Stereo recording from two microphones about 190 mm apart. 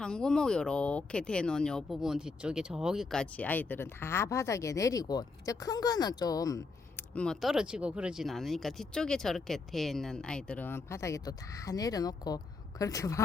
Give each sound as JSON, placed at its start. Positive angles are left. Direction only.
{"t": 0.0, "sound": "speech", "side_deg": 5}